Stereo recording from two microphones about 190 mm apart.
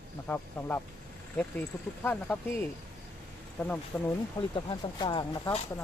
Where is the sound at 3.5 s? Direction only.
10° left (ahead or behind).